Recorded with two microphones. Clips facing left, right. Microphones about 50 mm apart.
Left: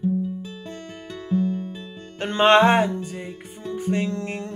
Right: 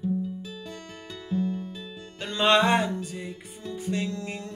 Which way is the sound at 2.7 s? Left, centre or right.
Left.